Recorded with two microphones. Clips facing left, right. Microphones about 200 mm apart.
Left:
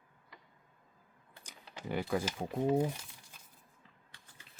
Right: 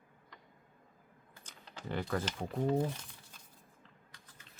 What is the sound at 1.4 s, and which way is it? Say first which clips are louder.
Speech: left 2 dB; 10° left (ahead or behind).